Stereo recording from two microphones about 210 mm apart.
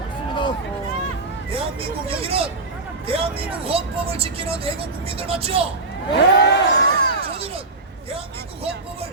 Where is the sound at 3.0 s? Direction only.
25° right (ahead or behind).